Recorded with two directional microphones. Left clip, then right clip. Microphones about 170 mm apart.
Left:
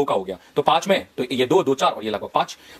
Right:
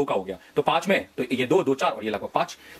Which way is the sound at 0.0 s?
15° left (ahead or behind).